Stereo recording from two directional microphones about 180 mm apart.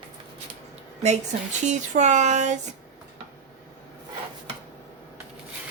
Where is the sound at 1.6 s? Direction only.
40° right (ahead or behind).